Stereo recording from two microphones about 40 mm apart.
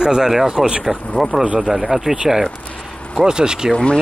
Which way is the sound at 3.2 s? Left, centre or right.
Centre.